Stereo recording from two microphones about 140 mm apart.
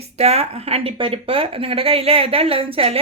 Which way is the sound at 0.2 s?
50° right (ahead or behind).